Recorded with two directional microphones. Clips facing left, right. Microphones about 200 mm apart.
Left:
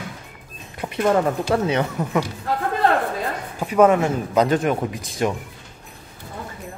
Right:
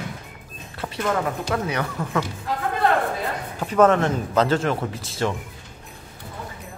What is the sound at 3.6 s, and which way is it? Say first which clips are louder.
Speech: left 2 dB; 10° left (ahead or behind).